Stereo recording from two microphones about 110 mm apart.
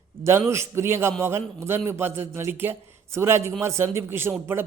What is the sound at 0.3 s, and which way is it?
A man's voice, 25° right (ahead or behind).